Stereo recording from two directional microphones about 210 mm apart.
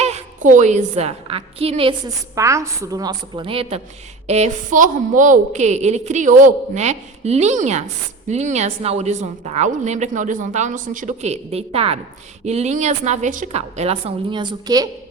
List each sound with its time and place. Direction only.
0.0 s a woman's voice: 35° right (ahead or behind)
2.3 s a woman's voice: 15° right (ahead or behind)